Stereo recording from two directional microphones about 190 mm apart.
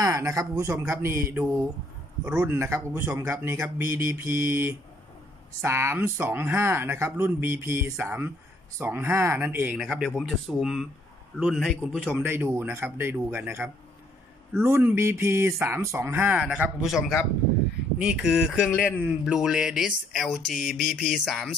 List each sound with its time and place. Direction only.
0.0 s speech: 15° right (ahead or behind)
9.8 s speech: centre (ahead or behind)